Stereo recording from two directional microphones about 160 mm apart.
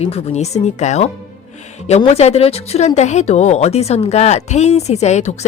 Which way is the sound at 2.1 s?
40° left (ahead or behind).